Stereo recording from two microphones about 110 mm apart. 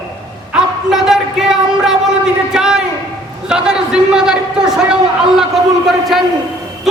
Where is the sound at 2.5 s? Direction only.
5° right (ahead or behind).